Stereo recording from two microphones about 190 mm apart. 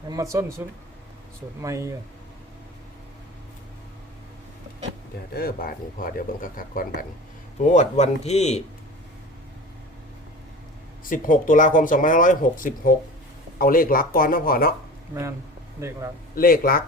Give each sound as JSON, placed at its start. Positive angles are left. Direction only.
{"t": 0.1, "sound": "speech", "side_deg": -15}
{"t": 1.6, "sound": "speech", "side_deg": -15}
{"t": 5.3, "sound": "speech", "side_deg": 50}
{"t": 11.0, "sound": "speech", "side_deg": 45}
{"t": 16.3, "sound": "speech", "side_deg": 50}